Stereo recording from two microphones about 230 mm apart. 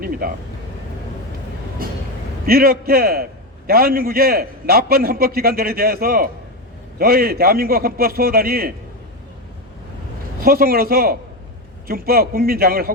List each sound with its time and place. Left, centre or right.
0.2 s a man's voice: right
2.5 s a man's voice: right
10.4 s a man's voice: right